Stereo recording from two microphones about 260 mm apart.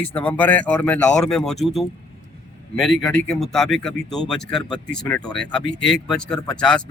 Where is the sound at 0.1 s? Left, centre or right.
Centre.